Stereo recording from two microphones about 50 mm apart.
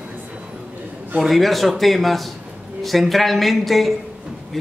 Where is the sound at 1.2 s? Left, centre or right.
Centre.